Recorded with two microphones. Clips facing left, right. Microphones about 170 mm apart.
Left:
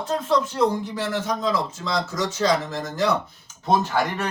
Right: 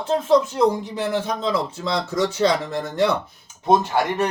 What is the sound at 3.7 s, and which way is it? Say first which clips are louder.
Speech: right 3 dB; 15° right (ahead or behind).